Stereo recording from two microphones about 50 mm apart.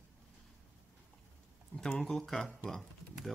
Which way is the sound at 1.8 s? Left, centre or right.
Centre.